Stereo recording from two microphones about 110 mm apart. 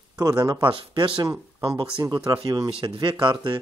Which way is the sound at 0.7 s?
55° right (ahead or behind).